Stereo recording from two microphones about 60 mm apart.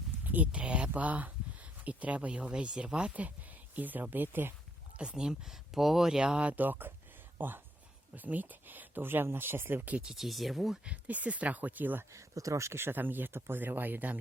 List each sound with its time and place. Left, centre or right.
0.3 s speech: right
4.9 s speech: centre
6.5 s speech: right
10.2 s speech: centre
10.8 s speech: right
12.1 s speech: right